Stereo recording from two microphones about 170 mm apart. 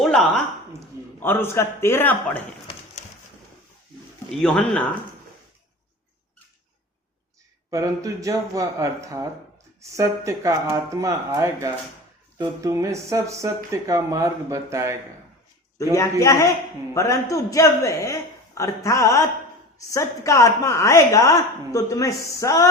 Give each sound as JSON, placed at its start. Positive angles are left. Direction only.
{"t": 0.0, "sound": "a sound", "side_deg": 0}
{"t": 1.2, "sound": "a man's voice", "side_deg": 15}
{"t": 4.3, "sound": "speech", "side_deg": 5}
{"t": 7.7, "sound": "speech", "side_deg": -20}
{"t": 16.2, "sound": "a woman's voice", "side_deg": 20}